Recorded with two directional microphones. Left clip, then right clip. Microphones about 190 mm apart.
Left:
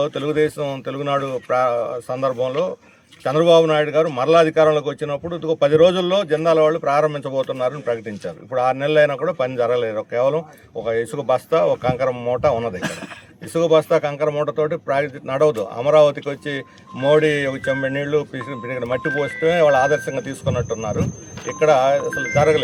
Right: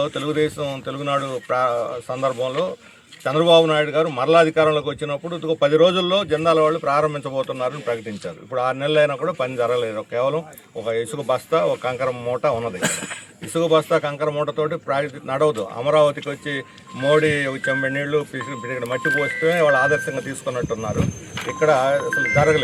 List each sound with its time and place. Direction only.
0.0 s a man's voice: 20° left (ahead or behind)